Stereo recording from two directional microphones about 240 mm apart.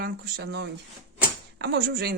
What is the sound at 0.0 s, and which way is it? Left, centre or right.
Speech, right.